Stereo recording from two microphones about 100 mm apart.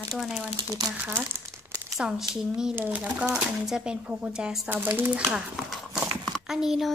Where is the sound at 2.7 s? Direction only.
15° right (ahead or behind).